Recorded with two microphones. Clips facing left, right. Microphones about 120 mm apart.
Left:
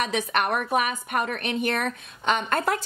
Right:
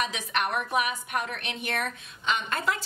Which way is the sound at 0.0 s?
45° left (ahead or behind).